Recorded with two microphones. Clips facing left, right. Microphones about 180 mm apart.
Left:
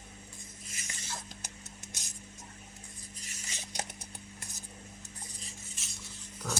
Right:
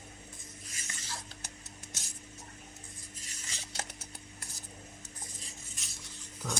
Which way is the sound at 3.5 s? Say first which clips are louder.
Left 2 dB; 15° left (ahead or behind).